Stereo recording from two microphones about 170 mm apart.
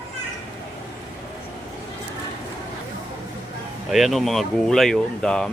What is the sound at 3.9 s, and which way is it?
Speech, centre (ahead or behind).